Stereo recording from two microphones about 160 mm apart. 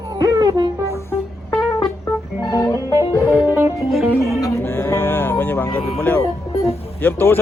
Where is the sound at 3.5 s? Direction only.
15° right (ahead or behind).